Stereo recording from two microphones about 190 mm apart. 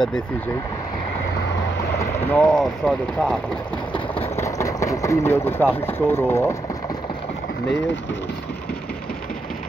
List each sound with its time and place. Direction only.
2.1 s speech: 5° left (ahead or behind)
3.9 s a sound: 30° left (ahead or behind)
4.4 s speech: 15° left (ahead or behind)